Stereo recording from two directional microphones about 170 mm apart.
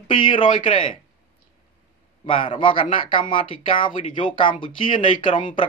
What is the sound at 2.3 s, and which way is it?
Speech, 30° left (ahead or behind).